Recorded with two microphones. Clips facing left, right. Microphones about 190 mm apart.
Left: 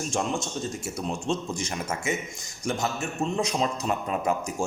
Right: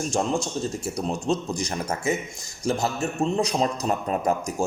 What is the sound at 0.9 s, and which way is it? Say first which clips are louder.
Speech: right 3 dB; 35° right (ahead or behind).